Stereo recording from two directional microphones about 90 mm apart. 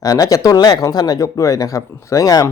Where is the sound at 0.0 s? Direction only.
40° left (ahead or behind).